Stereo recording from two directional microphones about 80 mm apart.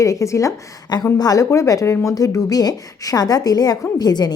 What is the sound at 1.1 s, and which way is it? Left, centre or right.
Speech, left.